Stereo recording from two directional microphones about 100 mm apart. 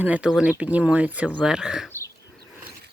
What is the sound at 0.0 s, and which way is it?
Speech, 10° right (ahead or behind).